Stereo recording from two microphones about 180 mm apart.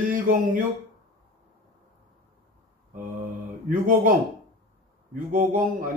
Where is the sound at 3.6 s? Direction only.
50° right (ahead or behind).